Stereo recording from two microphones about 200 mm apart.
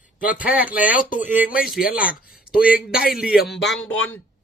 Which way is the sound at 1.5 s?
45° left (ahead or behind).